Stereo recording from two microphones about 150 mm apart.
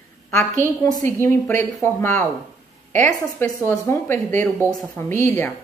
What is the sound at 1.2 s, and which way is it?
Speech, 15° left (ahead or behind).